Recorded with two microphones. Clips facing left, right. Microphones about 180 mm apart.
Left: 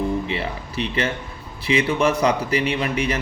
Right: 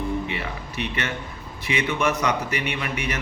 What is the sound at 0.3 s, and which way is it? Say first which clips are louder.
A man's voice: left 4 dB; 30° left (ahead or behind).